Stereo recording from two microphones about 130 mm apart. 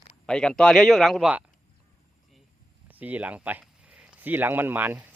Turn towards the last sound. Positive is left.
turn(degrees=-15)  # may be behind; listen again after turning